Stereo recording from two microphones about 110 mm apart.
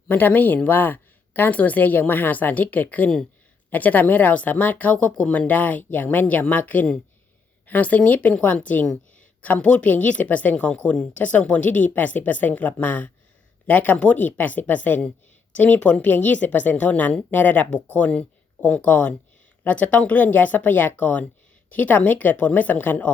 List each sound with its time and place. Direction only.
0.1 s a woman's voice: 15° left (ahead or behind)